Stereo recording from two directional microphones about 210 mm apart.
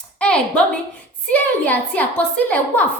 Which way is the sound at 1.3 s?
5° left (ahead or behind).